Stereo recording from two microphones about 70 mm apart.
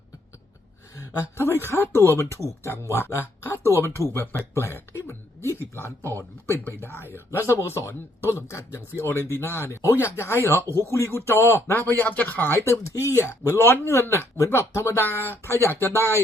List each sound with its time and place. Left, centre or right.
1.1 s speech: left
4.1 s speech: left
12.7 s speech: left